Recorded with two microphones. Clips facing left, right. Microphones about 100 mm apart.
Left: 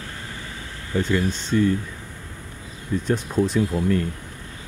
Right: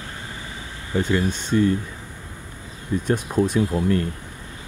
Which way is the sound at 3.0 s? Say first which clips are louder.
Right 1 dB; 10° right (ahead or behind).